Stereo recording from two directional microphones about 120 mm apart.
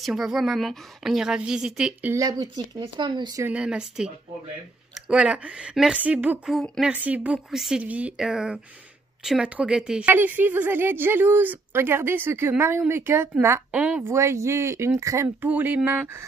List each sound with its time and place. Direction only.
0.0 s a woman's voice: 5° right (ahead or behind)
2.1 s speech: 30° right (ahead or behind)
3.4 s speech: 10° right (ahead or behind)
13.7 s speech: 10° right (ahead or behind)
14.0 s speech: 25° right (ahead or behind)
15.2 s speech: 15° right (ahead or behind)